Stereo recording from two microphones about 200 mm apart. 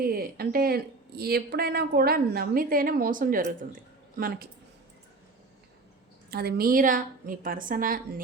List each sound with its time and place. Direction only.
0.0 s a woman's voice: 45° right (ahead or behind)
6.3 s a woman's voice: 50° right (ahead or behind)